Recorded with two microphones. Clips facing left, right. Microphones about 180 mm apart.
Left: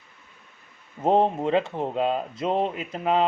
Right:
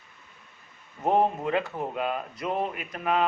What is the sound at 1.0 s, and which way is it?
Speech, 25° left (ahead or behind).